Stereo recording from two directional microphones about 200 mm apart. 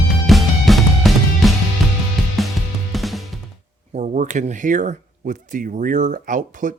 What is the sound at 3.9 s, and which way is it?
Speech, 35° right (ahead or behind).